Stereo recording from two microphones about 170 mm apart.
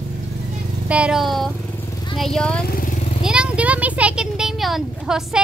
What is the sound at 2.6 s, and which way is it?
Motorcycle, 60° left (ahead or behind).